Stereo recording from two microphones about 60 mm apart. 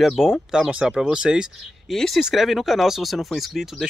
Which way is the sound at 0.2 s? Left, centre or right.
Centre.